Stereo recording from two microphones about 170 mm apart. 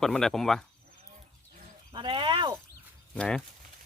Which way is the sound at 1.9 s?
30° right (ahead or behind).